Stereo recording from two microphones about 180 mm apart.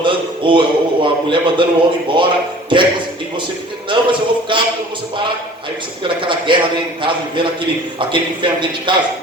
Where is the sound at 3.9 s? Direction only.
25° right (ahead or behind).